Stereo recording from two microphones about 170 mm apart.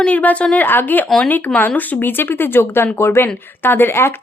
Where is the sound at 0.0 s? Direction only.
10° left (ahead or behind).